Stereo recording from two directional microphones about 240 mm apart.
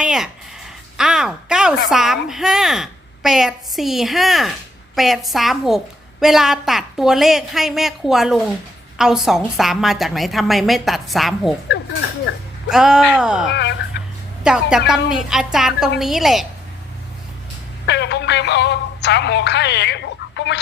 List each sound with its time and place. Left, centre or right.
0.0 s a sound: centre
0.9 s a woman's voice: centre
12.6 s a woman's voice: centre
13.5 s speech: left
14.0 s a sound: left
14.4 s a woman's voice: centre
17.8 s speech: left